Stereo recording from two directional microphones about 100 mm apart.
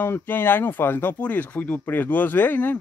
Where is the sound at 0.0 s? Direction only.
20° left (ahead or behind).